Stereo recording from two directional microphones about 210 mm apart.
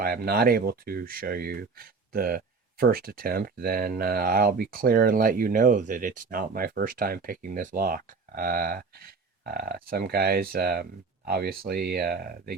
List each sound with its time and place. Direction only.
0.0 s speech: 45° right (ahead or behind)